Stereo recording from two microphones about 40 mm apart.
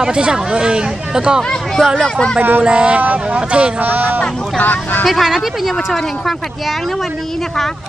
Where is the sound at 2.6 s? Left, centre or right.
Right.